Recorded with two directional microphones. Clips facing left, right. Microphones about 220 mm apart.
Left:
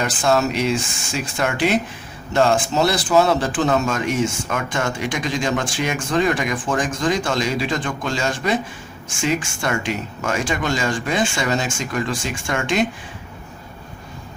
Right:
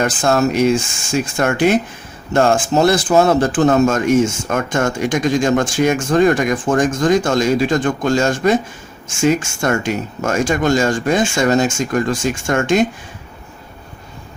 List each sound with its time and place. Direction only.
0.0 s speech: 45° right (ahead or behind)